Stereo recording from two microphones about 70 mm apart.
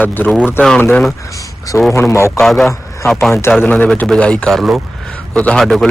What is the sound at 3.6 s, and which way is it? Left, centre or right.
Speech, left.